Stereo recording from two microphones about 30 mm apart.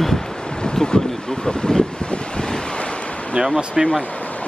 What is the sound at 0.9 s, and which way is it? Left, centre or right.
Speech, left.